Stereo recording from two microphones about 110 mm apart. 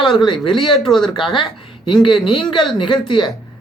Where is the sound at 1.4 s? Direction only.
50° left (ahead or behind).